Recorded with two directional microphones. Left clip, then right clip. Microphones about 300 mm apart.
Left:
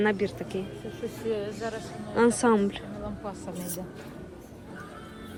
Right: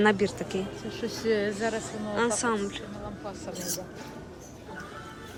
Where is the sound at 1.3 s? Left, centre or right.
Right.